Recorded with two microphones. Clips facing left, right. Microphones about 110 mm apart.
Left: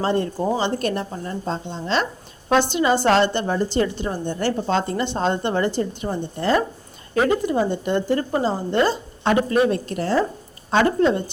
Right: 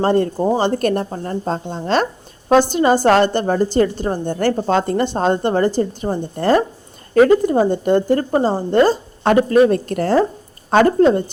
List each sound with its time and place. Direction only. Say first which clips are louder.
0.0 s a woman's voice: right 5 dB; 45° right (ahead or behind)